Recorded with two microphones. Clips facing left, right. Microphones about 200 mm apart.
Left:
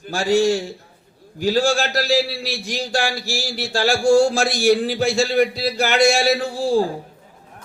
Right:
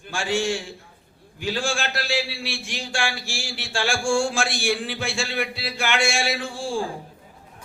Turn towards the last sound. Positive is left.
turn(degrees=40)  # may be behind; listen again after turning